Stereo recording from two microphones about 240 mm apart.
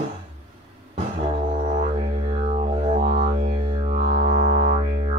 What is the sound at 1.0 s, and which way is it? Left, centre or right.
Music, right.